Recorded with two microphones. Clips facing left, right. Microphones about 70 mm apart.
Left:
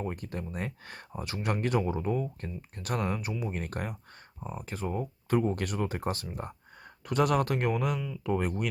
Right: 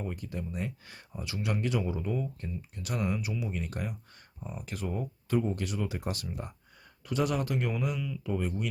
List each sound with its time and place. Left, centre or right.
0.0 s speech: left
4.4 s speech: left
7.1 s speech: left